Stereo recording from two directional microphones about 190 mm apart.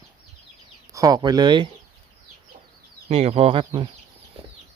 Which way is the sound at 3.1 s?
30° right (ahead or behind).